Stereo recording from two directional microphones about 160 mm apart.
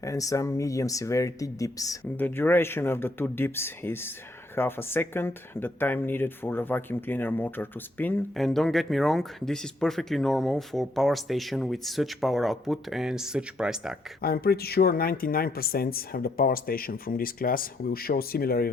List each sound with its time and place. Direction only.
0.0 s speech: 20° left (ahead or behind); by 13.9 s 5° right (ahead or behind)
14.2 s speech: 70° left (ahead or behind)